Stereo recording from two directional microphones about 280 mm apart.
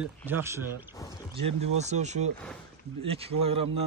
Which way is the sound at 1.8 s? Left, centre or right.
Right.